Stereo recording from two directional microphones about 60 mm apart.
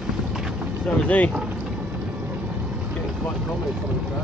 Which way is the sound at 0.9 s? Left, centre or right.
Left.